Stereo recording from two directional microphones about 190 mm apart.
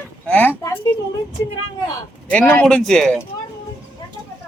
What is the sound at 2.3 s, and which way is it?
Speech, 5° left (ahead or behind).